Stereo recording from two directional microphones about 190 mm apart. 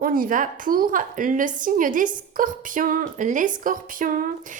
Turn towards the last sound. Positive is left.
turn(degrees=-45)  # may be behind; listen again after turning